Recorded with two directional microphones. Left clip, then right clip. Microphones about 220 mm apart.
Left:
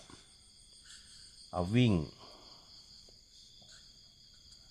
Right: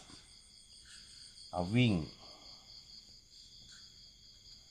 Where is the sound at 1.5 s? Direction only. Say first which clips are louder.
Left 2 dB; 30° left (ahead or behind).